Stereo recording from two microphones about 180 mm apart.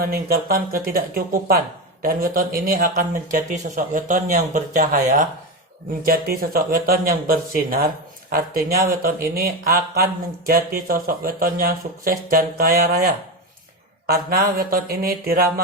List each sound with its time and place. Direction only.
0.0 s speech: 55° right (ahead or behind)
3.5 s speech: 45° right (ahead or behind)
6.1 s speech: 55° right (ahead or behind)